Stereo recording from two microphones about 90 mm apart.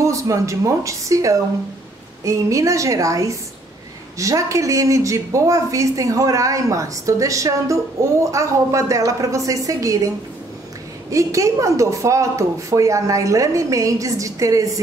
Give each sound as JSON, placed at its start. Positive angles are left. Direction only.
{"t": 0.0, "sound": "a woman's voice", "side_deg": -35}